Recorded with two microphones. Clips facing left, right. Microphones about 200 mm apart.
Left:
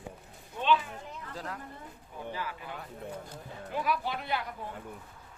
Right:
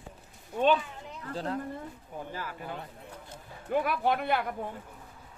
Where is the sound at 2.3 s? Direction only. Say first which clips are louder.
Even; 45° right (ahead or behind).